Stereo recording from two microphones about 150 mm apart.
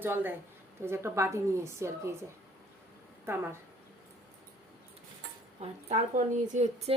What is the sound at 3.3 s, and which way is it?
Speech, 15° right (ahead or behind).